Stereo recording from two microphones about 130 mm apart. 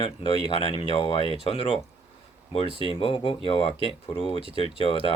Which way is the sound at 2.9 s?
40° left (ahead or behind).